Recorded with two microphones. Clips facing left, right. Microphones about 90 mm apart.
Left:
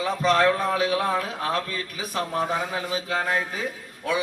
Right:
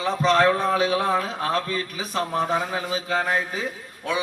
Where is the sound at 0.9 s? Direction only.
10° right (ahead or behind).